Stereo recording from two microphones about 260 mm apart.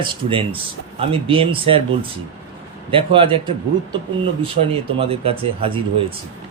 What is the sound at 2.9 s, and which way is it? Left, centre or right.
Speech, centre.